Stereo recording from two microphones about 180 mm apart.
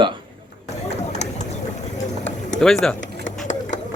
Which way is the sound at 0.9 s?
40° left (ahead or behind).